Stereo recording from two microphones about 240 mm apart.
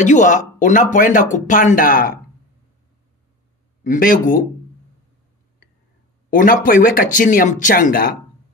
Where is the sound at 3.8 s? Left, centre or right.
Left.